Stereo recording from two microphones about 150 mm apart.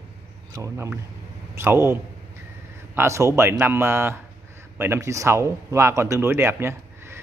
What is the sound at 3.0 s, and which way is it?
Speech, 20° right (ahead or behind).